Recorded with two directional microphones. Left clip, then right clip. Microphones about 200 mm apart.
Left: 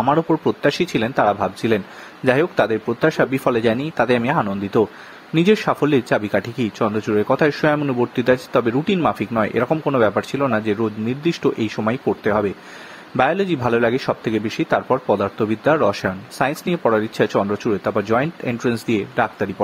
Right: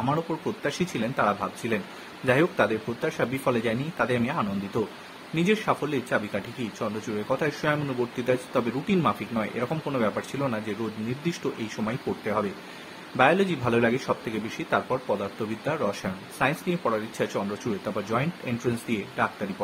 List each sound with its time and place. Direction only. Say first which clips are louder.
0.0 s speech: left 11 dB; 40° left (ahead or behind)